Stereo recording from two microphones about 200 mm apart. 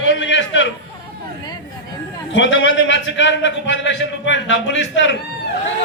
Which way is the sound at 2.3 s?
65° left (ahead or behind).